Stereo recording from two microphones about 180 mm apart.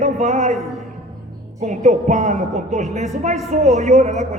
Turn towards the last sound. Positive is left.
turn(degrees=-40)  # may be behind; listen again after turning